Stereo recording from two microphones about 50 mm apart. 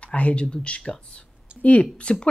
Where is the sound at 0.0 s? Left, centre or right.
Left.